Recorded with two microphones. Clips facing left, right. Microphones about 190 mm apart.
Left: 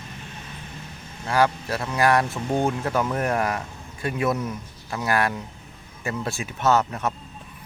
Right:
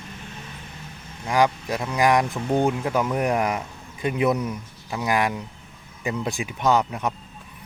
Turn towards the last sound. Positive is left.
turn(degrees=-15)  # may be behind; listen again after turning